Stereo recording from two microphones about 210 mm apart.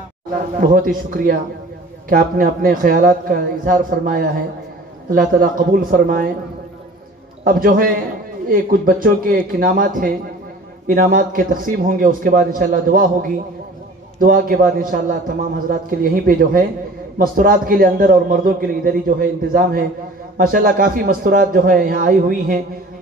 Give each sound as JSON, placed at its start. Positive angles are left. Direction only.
{"t": 0.6, "sound": "a man's voice", "side_deg": -45}
{"t": 7.4, "sound": "a man's voice", "side_deg": -40}